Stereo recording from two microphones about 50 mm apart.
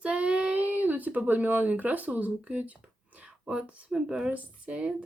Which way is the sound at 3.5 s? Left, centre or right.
Centre.